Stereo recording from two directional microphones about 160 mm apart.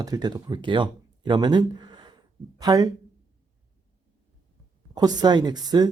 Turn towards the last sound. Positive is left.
turn(degrees=-25)  # may be behind; listen again after turning